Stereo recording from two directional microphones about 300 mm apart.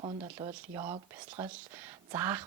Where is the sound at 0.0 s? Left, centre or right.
Centre.